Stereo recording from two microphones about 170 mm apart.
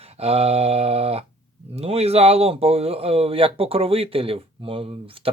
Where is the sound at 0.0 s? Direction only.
35° right (ahead or behind).